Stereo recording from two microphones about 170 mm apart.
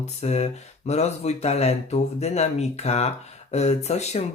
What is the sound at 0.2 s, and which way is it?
Speech, 40° left (ahead or behind).